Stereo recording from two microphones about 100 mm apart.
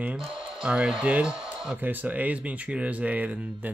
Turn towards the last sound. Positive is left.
turn(degrees=-15)  # may be behind; listen again after turning